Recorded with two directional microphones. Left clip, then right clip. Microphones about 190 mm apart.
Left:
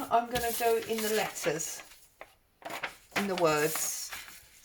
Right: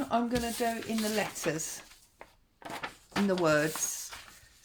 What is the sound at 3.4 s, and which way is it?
Speech, 40° right (ahead or behind).